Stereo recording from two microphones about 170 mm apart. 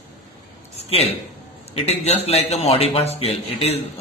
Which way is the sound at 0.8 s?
35° left (ahead or behind).